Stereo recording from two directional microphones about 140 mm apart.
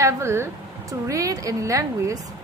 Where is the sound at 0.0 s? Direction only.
20° right (ahead or behind).